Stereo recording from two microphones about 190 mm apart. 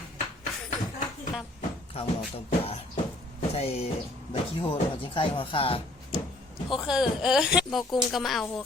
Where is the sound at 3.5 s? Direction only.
30° left (ahead or behind).